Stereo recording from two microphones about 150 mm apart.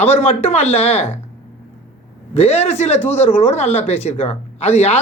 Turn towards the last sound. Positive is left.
turn(degrees=45)  # may be behind; listen again after turning